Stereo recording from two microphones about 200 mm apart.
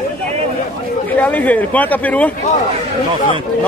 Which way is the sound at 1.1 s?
10° left (ahead or behind).